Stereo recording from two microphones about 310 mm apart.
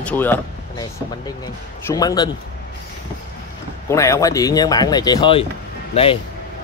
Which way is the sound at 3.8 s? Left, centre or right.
Centre.